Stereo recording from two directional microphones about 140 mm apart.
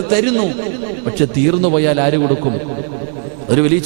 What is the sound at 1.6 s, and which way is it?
Speech, 10° left (ahead or behind).